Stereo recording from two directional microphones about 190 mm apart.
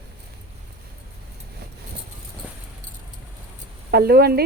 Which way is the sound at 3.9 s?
55° right (ahead or behind).